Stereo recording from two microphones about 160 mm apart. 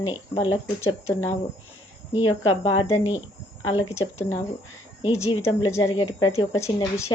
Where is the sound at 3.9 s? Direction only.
15° left (ahead or behind).